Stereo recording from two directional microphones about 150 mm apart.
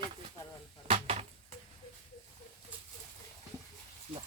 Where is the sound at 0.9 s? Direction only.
40° right (ahead or behind).